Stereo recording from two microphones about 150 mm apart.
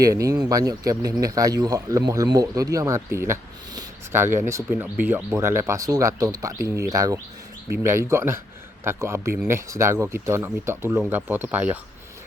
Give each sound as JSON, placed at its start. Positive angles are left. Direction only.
{"t": 0.0, "sound": "speech", "side_deg": -20}